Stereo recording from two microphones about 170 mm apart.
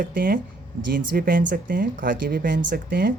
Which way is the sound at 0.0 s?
55° right (ahead or behind).